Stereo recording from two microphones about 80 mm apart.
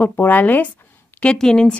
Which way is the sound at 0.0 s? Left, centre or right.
Left.